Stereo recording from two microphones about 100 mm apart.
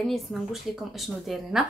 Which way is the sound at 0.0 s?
Centre (ahead or behind).